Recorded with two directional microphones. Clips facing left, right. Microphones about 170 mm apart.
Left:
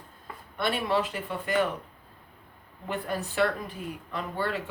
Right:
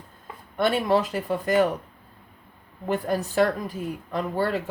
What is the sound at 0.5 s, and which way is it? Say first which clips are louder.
Speech: right 6 dB; 40° right (ahead or behind).